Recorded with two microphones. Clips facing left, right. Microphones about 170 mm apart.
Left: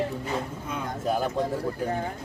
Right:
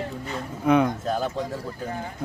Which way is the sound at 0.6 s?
70° right (ahead or behind).